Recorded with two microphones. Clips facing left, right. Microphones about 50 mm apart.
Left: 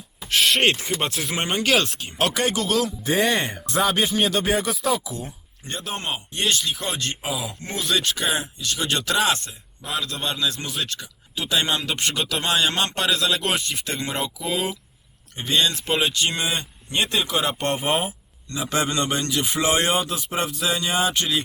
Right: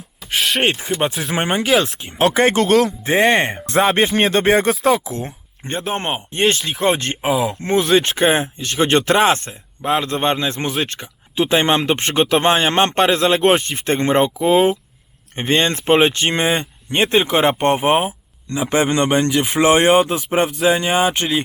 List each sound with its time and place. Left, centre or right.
0.3 s speech: centre; by 5.3 s right
5.6 s speech: right